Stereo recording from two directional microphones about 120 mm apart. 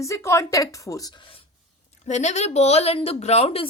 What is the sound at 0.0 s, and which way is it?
A woman's voice, 25° left (ahead or behind).